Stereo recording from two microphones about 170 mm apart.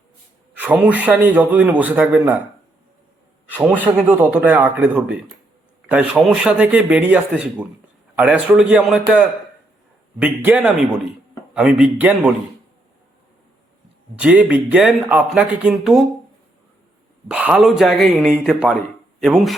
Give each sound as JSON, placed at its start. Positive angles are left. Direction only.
{"t": 0.5, "sound": "a man's voice", "side_deg": -10}
{"t": 3.5, "sound": "a man's voice", "side_deg": -10}
{"t": 14.2, "sound": "a man's voice", "side_deg": -5}
{"t": 17.2, "sound": "speech", "side_deg": -5}